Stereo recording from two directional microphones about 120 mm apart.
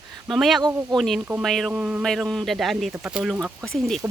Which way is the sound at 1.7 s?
10° right (ahead or behind).